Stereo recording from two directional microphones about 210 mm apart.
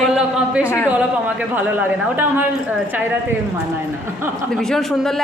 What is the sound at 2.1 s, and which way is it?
Speech, 10° right (ahead or behind).